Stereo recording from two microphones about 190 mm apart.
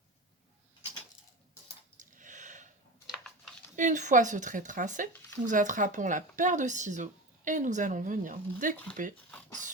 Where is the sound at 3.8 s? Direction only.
40° right (ahead or behind).